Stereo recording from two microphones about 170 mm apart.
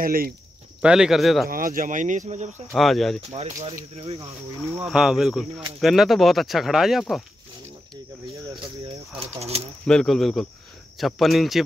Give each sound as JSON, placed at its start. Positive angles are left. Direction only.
{"t": 0.0, "sound": "speech", "side_deg": -60}
{"t": 0.8, "sound": "speech", "side_deg": -5}
{"t": 1.5, "sound": "speech", "side_deg": -55}
{"t": 2.7, "sound": "speech", "side_deg": 0}
{"t": 3.3, "sound": "speech", "side_deg": -35}
{"t": 4.8, "sound": "speech", "side_deg": 0}
{"t": 9.5, "sound": "speech", "side_deg": -35}
{"t": 9.8, "sound": "speech", "side_deg": 5}